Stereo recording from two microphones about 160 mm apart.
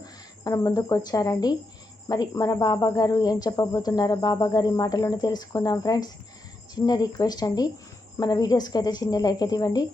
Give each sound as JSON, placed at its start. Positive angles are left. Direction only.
{"t": 0.0, "sound": "speech", "side_deg": 20}